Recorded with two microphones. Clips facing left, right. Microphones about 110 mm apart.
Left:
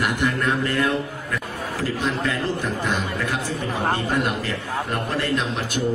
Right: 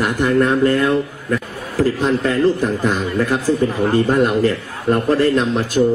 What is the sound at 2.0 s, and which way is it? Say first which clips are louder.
A man's voice: right 8 dB; 35° right (ahead or behind).